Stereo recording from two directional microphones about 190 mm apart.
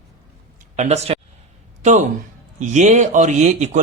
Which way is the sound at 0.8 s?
35° right (ahead or behind).